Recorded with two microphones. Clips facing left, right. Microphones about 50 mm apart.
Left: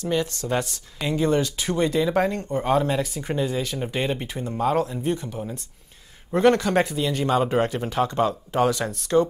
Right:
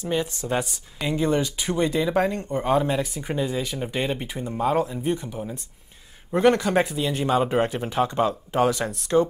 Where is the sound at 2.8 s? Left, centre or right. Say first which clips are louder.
Even; centre.